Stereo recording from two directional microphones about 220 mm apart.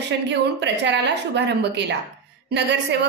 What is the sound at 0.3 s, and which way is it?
A woman's voice, 50° right (ahead or behind).